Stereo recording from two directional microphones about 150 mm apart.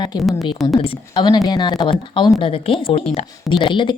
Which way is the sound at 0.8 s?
35° left (ahead or behind).